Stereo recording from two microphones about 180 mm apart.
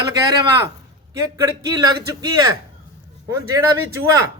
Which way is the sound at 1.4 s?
20° right (ahead or behind).